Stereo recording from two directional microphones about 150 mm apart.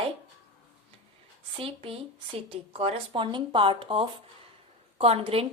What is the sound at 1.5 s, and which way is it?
A woman's voice, 40° right (ahead or behind).